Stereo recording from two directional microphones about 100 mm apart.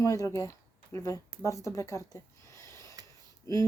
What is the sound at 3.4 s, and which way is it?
Speech, 30° left (ahead or behind).